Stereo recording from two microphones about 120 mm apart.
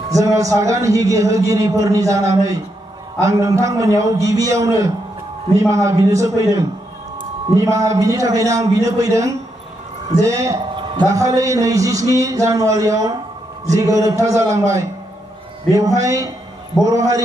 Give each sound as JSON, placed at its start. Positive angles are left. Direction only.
{"t": 0.1, "sound": "a man's voice", "side_deg": -30}